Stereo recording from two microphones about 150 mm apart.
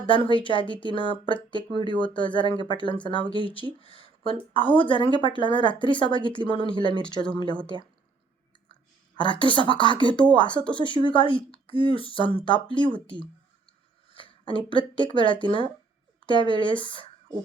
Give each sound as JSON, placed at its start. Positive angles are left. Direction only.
{"t": 0.0, "sound": "a woman's voice", "side_deg": 35}
{"t": 9.1, "sound": "a woman's voice", "side_deg": 30}